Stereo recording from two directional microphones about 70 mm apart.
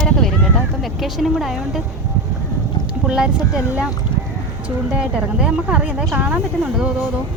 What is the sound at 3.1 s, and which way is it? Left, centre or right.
Speech, centre.